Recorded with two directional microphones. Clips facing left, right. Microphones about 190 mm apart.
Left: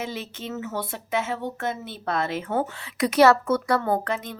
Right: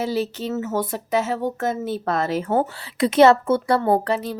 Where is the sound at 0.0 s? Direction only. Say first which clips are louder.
Right 9 dB; 35° right (ahead or behind).